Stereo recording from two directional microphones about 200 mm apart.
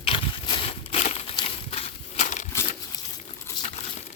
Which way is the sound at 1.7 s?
35° left (ahead or behind).